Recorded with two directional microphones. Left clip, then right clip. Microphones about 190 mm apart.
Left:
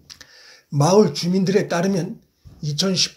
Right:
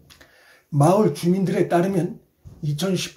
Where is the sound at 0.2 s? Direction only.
35° left (ahead or behind).